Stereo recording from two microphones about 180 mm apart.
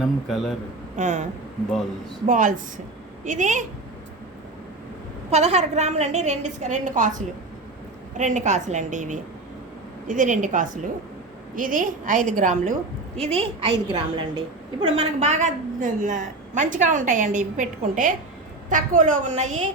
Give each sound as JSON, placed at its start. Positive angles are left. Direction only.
{"t": 0.0, "sound": "a man's voice", "side_deg": 0}
{"t": 0.9, "sound": "a woman's voice", "side_deg": -40}
{"t": 5.3, "sound": "a woman's voice", "side_deg": -35}
{"t": 13.1, "sound": "a woman's voice", "side_deg": -35}